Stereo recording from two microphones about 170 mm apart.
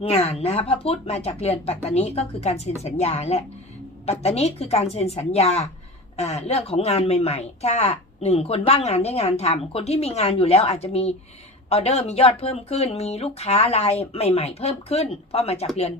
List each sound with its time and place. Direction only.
0.0 s a woman's voice: 35° left (ahead or behind)